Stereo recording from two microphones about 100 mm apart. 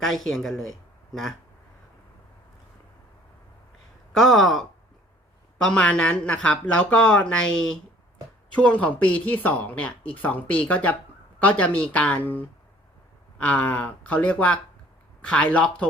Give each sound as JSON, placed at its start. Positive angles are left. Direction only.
{"t": 0.0, "sound": "speech", "side_deg": 0}
{"t": 4.2, "sound": "speech", "side_deg": 0}
{"t": 5.6, "sound": "speech", "side_deg": 10}